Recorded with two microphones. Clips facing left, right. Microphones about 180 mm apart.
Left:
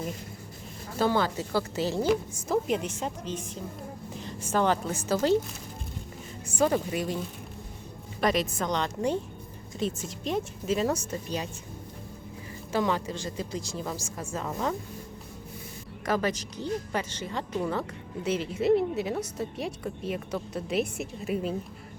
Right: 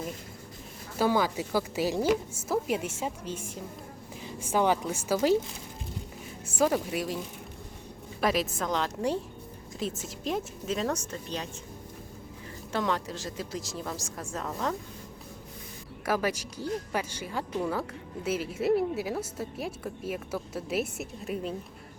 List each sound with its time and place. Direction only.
0.9 s a woman's voice: 10° right (ahead or behind)
6.6 s a woman's voice: 5° right (ahead or behind)
8.2 s a woman's voice: 5° right (ahead or behind)
12.7 s a woman's voice: centre (ahead or behind)
16.0 s a woman's voice: 10° right (ahead or behind)